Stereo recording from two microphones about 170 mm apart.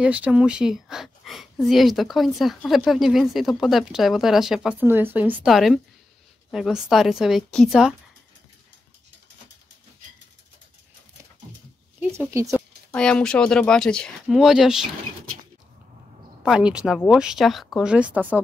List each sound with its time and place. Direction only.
0.0 s a woman's voice: 5° right (ahead or behind)
12.4 s speech: 15° right (ahead or behind)
12.9 s a woman's voice: 5° left (ahead or behind)
16.4 s a woman's voice: 5° right (ahead or behind)